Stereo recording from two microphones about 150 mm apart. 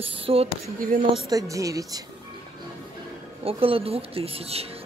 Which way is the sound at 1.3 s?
25° right (ahead or behind).